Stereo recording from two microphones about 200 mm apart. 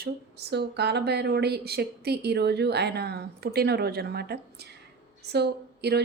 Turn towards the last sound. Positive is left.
turn(degrees=-55)  # may be behind; listen again after turning